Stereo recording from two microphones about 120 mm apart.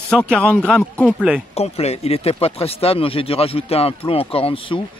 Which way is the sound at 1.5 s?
60° left (ahead or behind).